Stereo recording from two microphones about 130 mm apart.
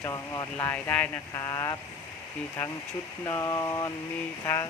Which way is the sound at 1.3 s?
25° left (ahead or behind).